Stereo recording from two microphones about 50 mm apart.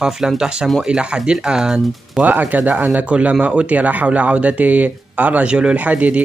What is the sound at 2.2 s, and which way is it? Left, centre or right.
Speech, right.